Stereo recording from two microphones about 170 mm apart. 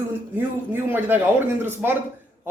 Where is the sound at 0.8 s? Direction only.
10° right (ahead or behind).